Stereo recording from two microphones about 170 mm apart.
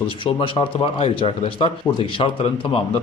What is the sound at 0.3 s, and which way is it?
Speech, 30° left (ahead or behind).